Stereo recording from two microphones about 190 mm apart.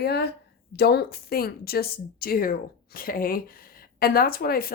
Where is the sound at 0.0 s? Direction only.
60° left (ahead or behind).